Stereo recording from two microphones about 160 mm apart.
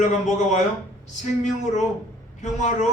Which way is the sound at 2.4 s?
45° left (ahead or behind).